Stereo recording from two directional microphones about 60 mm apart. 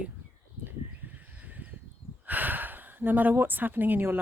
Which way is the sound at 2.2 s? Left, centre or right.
Right.